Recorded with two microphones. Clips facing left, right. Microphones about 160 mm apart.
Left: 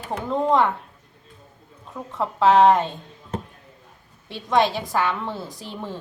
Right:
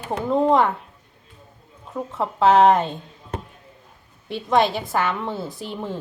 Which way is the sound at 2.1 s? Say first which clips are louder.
Even; centre (ahead or behind).